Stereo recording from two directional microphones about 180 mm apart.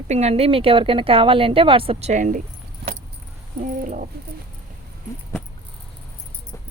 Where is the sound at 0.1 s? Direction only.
35° right (ahead or behind).